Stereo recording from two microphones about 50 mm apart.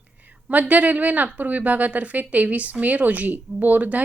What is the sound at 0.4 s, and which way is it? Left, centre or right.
A woman's voice, right.